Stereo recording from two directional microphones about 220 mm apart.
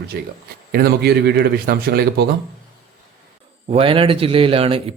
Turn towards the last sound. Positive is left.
turn(degrees=-25)  # may be behind; listen again after turning